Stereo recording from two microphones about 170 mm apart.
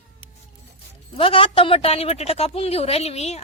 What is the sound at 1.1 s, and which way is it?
A woman's voice, 30° left (ahead or behind).